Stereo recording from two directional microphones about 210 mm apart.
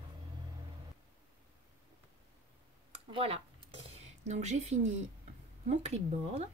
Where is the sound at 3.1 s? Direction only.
25° right (ahead or behind).